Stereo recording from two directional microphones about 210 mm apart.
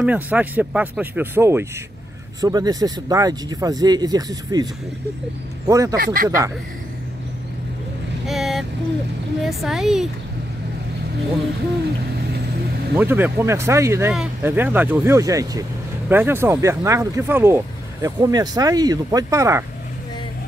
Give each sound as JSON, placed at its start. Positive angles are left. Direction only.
{"t": 0.0, "sound": "speech", "side_deg": -5}
{"t": 5.7, "sound": "speech", "side_deg": -15}
{"t": 5.9, "sound": "speech", "side_deg": -45}
{"t": 6.2, "sound": "speech", "side_deg": -15}
{"t": 8.3, "sound": "vehicle", "side_deg": 0}
{"t": 9.4, "sound": "a woman's voice", "side_deg": 0}
{"t": 12.9, "sound": "speech", "side_deg": -10}